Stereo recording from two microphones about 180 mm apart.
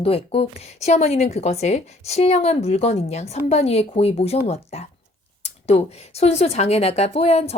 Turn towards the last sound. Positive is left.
turn(degrees=35)  # may be behind; listen again after turning